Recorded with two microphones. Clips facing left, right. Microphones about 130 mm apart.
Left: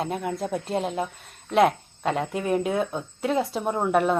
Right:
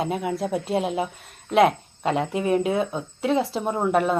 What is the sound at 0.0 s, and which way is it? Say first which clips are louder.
Speech: right 3 dB; 5° right (ahead or behind).